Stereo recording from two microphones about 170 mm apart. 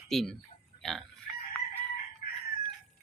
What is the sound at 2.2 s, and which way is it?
Chicken, 55° left (ahead or behind).